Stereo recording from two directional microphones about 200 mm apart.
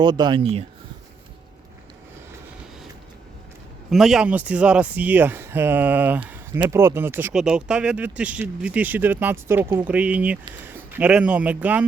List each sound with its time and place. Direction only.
0.0 s speech: 20° right (ahead or behind)
3.8 s speech: centre (ahead or behind)
6.2 s a sound: 10° right (ahead or behind)
6.6 s speech: 15° right (ahead or behind)